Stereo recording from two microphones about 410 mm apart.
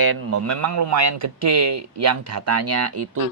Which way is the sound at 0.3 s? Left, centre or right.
Right.